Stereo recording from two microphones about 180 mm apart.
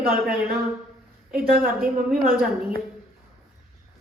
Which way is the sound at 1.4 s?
50° right (ahead or behind).